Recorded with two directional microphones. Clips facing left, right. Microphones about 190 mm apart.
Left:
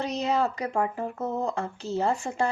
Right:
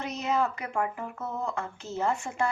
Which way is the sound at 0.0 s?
35° left (ahead or behind).